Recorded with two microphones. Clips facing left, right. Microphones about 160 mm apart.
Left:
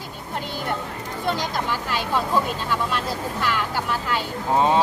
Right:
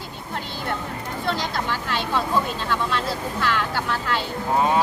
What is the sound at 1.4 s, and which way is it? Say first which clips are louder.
Speech: left 1 dB; 10° left (ahead or behind).